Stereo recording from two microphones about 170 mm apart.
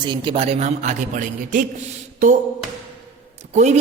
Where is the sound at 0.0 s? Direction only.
35° right (ahead or behind).